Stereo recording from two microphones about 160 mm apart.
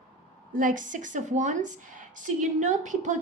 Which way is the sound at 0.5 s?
55° right (ahead or behind).